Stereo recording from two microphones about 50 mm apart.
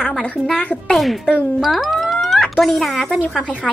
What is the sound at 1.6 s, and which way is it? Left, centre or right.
Music, centre.